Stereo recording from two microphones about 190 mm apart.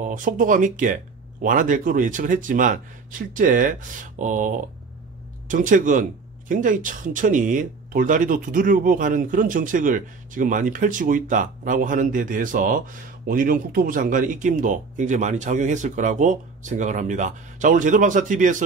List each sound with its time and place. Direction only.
0.0 s speech: 45° right (ahead or behind)